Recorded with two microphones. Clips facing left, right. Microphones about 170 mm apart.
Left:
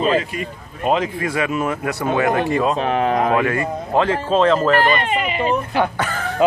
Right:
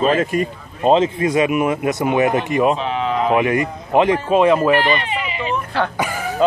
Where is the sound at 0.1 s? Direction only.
45° right (ahead or behind).